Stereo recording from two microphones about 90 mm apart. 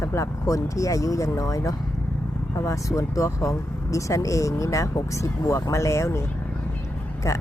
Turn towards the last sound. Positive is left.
turn(degrees=35)  # may be behind; listen again after turning